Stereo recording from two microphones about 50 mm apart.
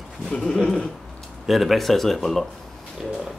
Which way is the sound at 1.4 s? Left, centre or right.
Centre.